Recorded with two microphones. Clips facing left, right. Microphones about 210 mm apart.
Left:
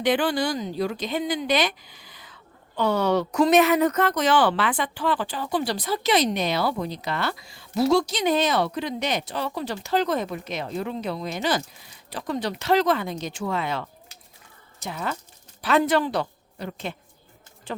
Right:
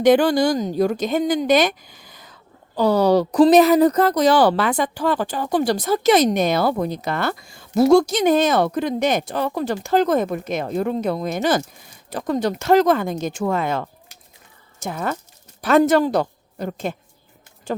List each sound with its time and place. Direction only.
0.0 s a woman's voice: 45° right (ahead or behind)